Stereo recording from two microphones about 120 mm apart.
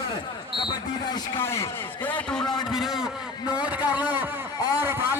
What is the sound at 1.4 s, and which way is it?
A man's voice, 20° left (ahead or behind).